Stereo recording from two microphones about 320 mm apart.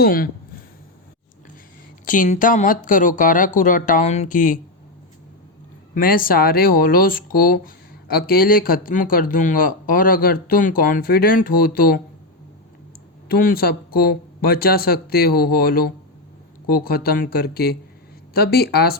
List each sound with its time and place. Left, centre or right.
0.0 s speech: left
2.0 s speech: left
5.9 s speech: left
13.2 s speech: left